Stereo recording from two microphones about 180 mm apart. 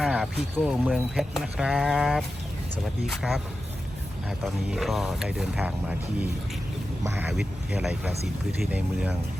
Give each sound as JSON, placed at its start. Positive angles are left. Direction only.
{"t": 0.0, "sound": "speech", "side_deg": 0}
{"t": 4.4, "sound": "speech", "side_deg": 0}
{"t": 7.0, "sound": "speech", "side_deg": -15}
{"t": 7.3, "sound": "speech", "side_deg": 0}